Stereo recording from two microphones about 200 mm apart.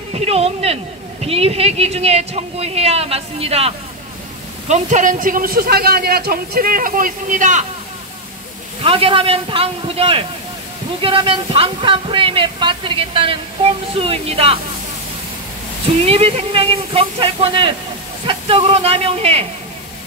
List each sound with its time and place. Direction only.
0.1 s a woman's voice: 30° right (ahead or behind)
8.8 s speech: 25° right (ahead or behind)
16.1 s speech: 30° right (ahead or behind)